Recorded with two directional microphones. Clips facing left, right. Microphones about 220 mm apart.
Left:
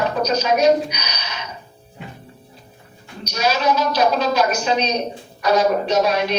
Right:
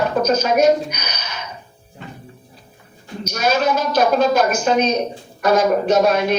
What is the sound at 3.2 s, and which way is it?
Speech, 50° right (ahead or behind).